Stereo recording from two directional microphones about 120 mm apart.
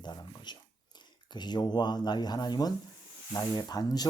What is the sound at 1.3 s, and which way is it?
Speech, 35° left (ahead or behind).